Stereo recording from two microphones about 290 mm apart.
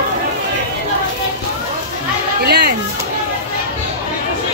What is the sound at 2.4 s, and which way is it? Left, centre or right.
Speech, right.